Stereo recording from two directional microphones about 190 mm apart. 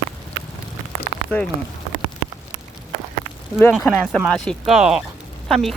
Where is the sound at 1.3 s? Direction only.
10° left (ahead or behind).